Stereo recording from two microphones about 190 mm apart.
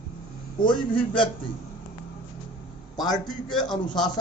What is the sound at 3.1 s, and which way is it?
Speech, 5° left (ahead or behind).